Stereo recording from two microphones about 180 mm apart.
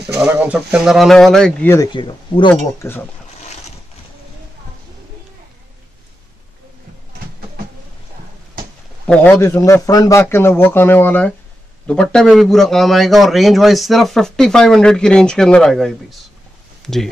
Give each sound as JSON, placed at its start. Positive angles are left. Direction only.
{"t": 0.2, "sound": "a man's voice", "side_deg": -10}
{"t": 1.9, "sound": "speech", "side_deg": 25}
{"t": 2.8, "sound": "a man's voice", "side_deg": 15}
{"t": 9.0, "sound": "a man's voice", "side_deg": 10}